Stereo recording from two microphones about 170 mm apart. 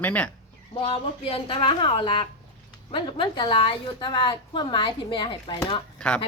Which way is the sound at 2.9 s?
30° left (ahead or behind).